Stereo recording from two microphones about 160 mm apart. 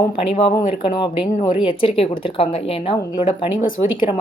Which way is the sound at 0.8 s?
30° left (ahead or behind).